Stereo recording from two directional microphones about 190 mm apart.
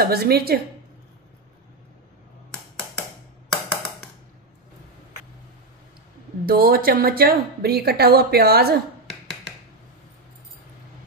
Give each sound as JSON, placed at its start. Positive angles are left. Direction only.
{"t": 0.0, "sound": "a woman's voice", "side_deg": -55}
{"t": 6.4, "sound": "a woman's voice", "side_deg": -50}